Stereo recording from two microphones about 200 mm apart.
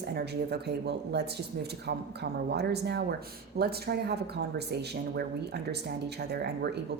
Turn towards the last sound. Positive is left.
turn(degrees=-55)  # may be behind; listen again after turning